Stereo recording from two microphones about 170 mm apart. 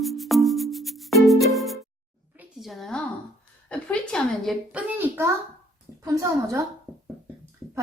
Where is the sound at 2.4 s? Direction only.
Centre (ahead or behind).